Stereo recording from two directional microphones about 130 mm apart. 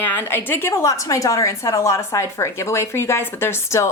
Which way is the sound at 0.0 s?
15° left (ahead or behind).